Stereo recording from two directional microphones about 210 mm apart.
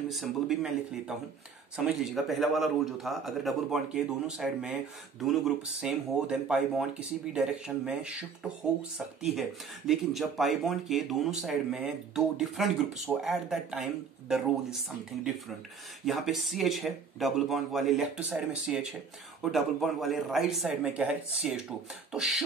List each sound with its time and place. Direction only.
0.1 s speech: centre (ahead or behind)
16.1 s speech: centre (ahead or behind)